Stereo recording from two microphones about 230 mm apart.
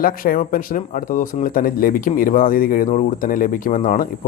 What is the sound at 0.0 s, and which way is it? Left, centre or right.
Speech, left.